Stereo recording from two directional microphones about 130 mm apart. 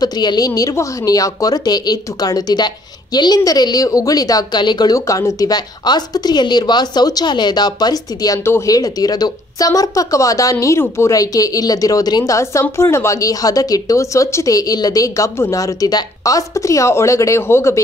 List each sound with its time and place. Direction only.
0.0 s a woman's voice: 30° left (ahead or behind)